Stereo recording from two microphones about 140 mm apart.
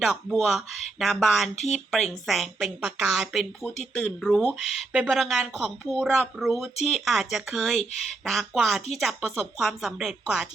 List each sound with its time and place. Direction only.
0.0 s a woman's voice: centre (ahead or behind)